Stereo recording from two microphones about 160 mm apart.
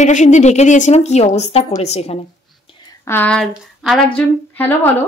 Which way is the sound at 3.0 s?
10° left (ahead or behind).